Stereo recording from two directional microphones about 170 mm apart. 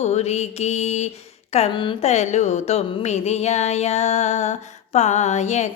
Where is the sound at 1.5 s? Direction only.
40° left (ahead or behind).